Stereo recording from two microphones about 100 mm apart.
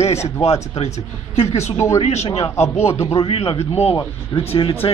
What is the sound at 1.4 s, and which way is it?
Speech, 30° left (ahead or behind).